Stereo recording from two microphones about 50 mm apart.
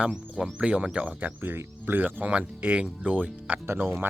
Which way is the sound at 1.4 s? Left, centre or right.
Right.